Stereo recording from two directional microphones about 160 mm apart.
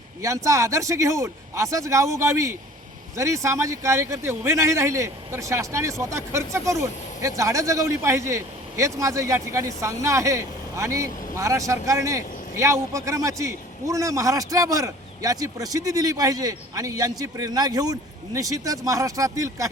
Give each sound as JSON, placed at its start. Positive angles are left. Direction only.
{"t": 0.2, "sound": "a man's voice", "side_deg": -20}